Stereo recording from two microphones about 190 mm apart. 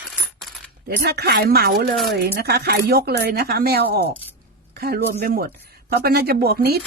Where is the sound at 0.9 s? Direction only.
55° right (ahead or behind).